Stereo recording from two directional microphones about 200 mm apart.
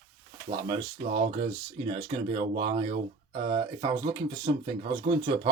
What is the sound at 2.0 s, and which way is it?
Speech, 25° right (ahead or behind).